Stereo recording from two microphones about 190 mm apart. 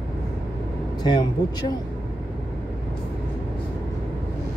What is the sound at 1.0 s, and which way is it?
Speech, 25° left (ahead or behind).